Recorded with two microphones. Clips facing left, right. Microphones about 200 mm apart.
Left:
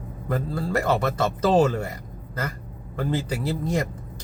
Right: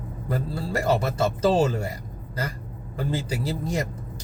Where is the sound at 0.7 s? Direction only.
30° right (ahead or behind).